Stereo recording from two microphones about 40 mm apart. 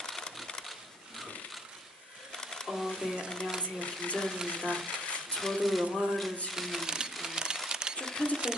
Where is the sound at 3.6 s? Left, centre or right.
Left.